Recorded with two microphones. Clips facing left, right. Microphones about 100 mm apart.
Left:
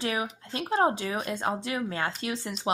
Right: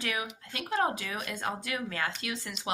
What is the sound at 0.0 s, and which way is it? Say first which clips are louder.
A woman's voice: left 5 dB; 30° left (ahead or behind).